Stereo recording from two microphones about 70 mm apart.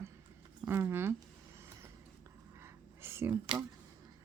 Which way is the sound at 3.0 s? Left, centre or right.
Right.